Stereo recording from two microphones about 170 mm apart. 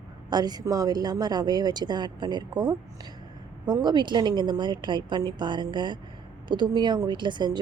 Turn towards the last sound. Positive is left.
turn(degrees=-25)  # may be behind; listen again after turning